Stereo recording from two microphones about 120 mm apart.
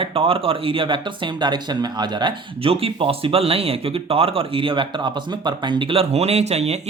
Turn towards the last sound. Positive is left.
turn(degrees=-65)  # may be behind; listen again after turning